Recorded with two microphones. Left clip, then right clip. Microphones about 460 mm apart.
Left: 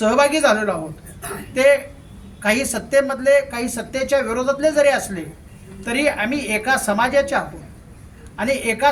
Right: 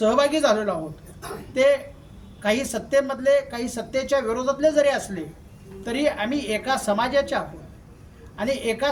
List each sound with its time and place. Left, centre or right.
0.0 s a man's voice: right